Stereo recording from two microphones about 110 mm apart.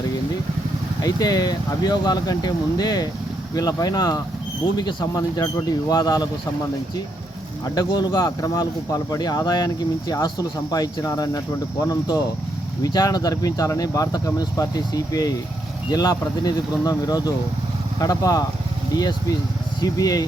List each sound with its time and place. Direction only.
1.0 s speech: 35° left (ahead or behind)
5.1 s speech: 35° left (ahead or behind)
7.6 s speech: 40° left (ahead or behind)
19.8 s speech: 35° left (ahead or behind)